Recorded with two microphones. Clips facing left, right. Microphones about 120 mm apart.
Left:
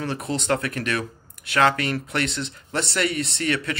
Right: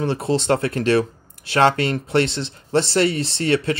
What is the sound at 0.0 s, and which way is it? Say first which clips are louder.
Speech: right 7 dB; 30° right (ahead or behind).